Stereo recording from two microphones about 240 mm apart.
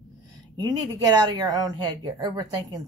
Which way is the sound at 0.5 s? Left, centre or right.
Centre.